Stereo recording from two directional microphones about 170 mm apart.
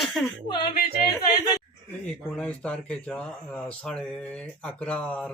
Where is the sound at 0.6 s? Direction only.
25° left (ahead or behind).